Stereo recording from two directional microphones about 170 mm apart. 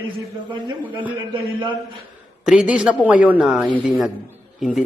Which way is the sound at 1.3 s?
30° right (ahead or behind).